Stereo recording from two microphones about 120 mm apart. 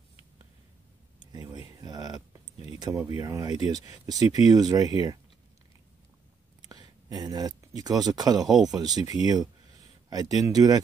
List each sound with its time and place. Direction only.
1.3 s a sound: 35° right (ahead or behind)
1.8 s speech: 30° right (ahead or behind)
6.7 s speech: 35° right (ahead or behind)